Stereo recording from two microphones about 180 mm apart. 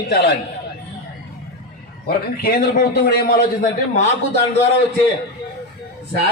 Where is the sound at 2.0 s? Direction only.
60° left (ahead or behind).